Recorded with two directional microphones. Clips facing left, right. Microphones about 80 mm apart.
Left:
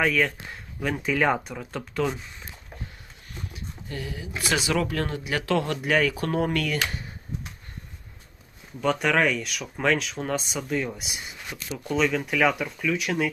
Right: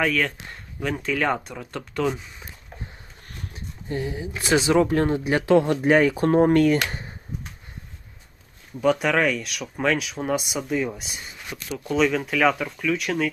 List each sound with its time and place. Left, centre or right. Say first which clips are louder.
0.0 s speech: even; centre
3.5 s a sound: right 8 dB; right
4.4 s speech: right 6 dB; right
8.8 s speech: right 2 dB; centre